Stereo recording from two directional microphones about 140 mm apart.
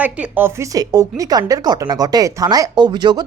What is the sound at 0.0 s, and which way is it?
Speech, 15° right (ahead or behind).